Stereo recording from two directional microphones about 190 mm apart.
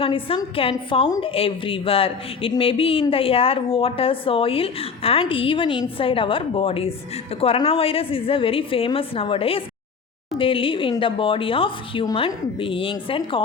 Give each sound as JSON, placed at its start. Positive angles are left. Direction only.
{"t": 0.0, "sound": "a woman's voice", "side_deg": 30}